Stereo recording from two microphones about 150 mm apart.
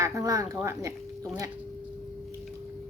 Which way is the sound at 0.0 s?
20° right (ahead or behind).